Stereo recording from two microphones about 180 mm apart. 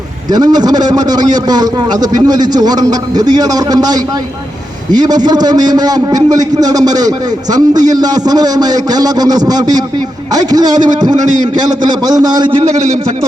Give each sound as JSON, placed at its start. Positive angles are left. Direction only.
{"t": 0.3, "sound": "a man's voice", "side_deg": -20}